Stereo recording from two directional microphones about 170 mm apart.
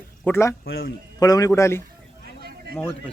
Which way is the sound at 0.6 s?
60° left (ahead or behind).